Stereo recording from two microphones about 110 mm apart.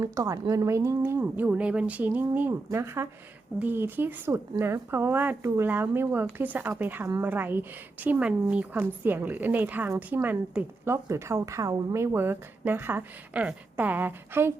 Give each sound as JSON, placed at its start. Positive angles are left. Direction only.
{"t": 0.0, "sound": "a woman's voice", "side_deg": -30}